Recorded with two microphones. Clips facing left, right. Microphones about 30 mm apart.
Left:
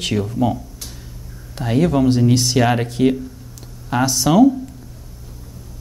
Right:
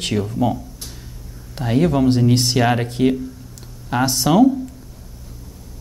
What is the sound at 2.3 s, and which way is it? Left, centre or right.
Speech, right.